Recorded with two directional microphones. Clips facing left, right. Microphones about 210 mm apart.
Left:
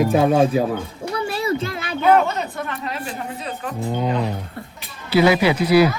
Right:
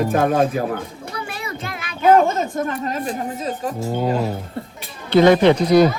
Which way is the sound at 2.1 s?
45° right (ahead or behind).